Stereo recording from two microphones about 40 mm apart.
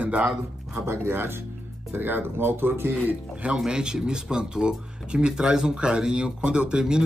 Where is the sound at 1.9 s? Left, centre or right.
Right.